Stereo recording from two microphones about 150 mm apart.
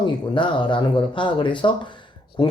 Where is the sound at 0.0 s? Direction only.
35° left (ahead or behind).